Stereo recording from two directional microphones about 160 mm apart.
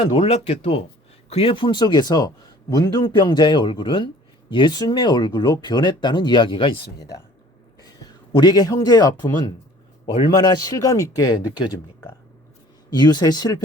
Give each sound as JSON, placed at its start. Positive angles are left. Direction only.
{"t": 0.0, "sound": "speech", "side_deg": 35}
{"t": 7.8, "sound": "speech", "side_deg": 25}
{"t": 12.9, "sound": "speech", "side_deg": 25}